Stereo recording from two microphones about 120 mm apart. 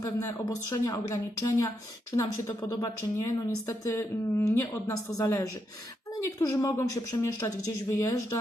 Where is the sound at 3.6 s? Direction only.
20° left (ahead or behind).